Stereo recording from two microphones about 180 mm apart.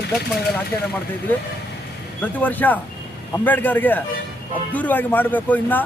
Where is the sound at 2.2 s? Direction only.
10° left (ahead or behind).